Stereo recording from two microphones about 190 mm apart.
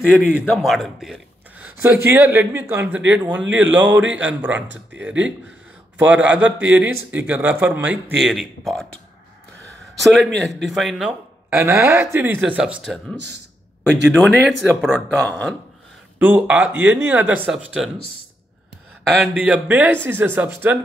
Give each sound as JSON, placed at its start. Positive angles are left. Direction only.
{"t": 0.5, "sound": "a man's voice", "side_deg": 0}
{"t": 1.8, "sound": "speech", "side_deg": -15}
{"t": 10.0, "sound": "speech", "side_deg": 0}
{"t": 11.5, "sound": "speech", "side_deg": -10}
{"t": 14.1, "sound": "speech", "side_deg": 0}
{"t": 16.2, "sound": "speech", "side_deg": -10}
{"t": 19.2, "sound": "speech", "side_deg": -5}